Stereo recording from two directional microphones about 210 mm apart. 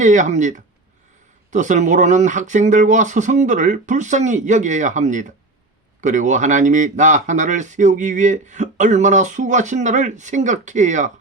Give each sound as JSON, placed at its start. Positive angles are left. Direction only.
{"t": 0.0, "sound": "speech", "side_deg": -35}